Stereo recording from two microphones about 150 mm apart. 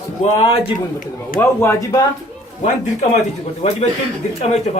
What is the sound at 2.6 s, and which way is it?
A man's voice, 45° left (ahead or behind).